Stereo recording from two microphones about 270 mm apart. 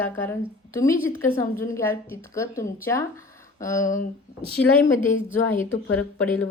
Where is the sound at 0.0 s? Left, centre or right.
Centre.